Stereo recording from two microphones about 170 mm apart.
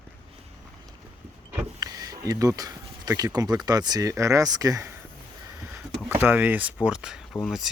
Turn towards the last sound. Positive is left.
turn(degrees=0)  # may be behind; listen again after turning